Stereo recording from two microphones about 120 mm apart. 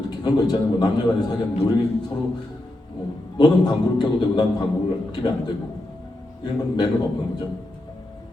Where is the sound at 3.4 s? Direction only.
35° left (ahead or behind).